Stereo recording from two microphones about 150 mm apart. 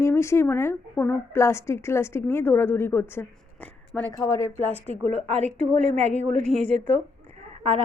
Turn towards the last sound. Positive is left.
turn(degrees=-35)  # may be behind; listen again after turning